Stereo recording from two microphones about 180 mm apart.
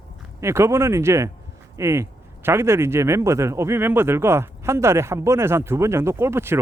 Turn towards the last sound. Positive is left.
turn(degrees=-15)  # may be behind; listen again after turning